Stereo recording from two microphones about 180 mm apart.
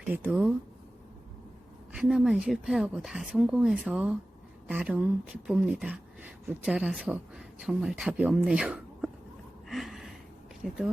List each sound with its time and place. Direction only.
0.0 s speech: 5° right (ahead or behind)
1.9 s speech: 5° right (ahead or behind)
9.6 s a sound: centre (ahead or behind)
10.6 s speech: centre (ahead or behind)